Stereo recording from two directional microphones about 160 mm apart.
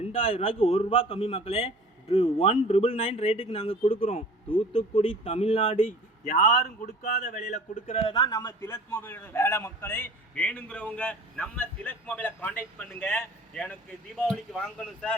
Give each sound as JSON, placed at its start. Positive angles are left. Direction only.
{"t": 0.0, "sound": "a man's voice", "side_deg": 40}
{"t": 8.1, "sound": "a man's voice", "side_deg": 25}